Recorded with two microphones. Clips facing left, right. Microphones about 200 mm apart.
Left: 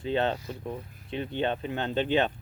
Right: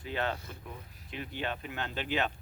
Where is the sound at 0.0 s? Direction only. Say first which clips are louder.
Left 7 dB; 25° left (ahead or behind).